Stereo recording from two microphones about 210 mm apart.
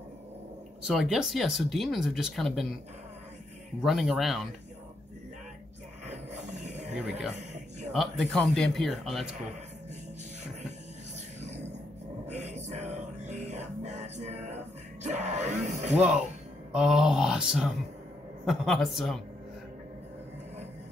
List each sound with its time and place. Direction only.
0.8 s speech: centre (ahead or behind)
3.8 s speech: centre (ahead or behind)
6.4 s a sound: 35° right (ahead or behind)
6.9 s speech: 5° right (ahead or behind)
12.3 s music: 35° right (ahead or behind)
16.0 s speech: centre (ahead or behind)